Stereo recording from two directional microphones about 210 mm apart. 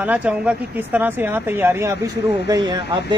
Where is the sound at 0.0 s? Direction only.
5° right (ahead or behind).